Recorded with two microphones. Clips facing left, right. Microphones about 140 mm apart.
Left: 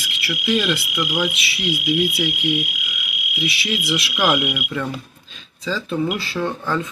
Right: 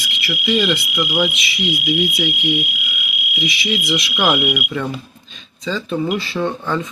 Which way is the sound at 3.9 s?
20° right (ahead or behind).